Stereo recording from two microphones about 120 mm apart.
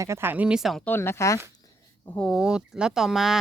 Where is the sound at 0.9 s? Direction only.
20° left (ahead or behind).